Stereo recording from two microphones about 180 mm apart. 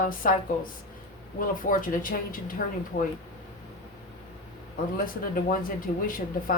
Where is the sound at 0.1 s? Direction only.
50° left (ahead or behind).